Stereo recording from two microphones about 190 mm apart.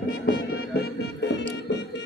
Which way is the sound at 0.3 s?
55° left (ahead or behind).